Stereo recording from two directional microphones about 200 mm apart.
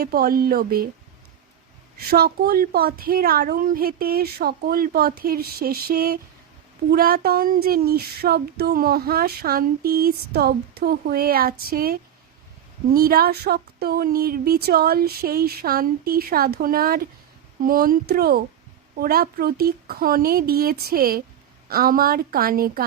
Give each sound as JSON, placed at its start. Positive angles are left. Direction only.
{"t": 0.0, "sound": "female singing", "side_deg": -50}
{"t": 2.0, "sound": "female singing", "side_deg": -50}